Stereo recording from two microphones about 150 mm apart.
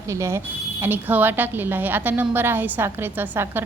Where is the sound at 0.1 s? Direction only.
20° right (ahead or behind).